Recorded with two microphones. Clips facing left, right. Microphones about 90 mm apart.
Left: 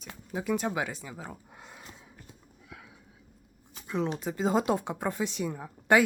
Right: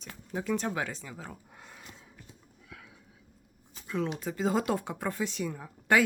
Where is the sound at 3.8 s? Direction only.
20° left (ahead or behind).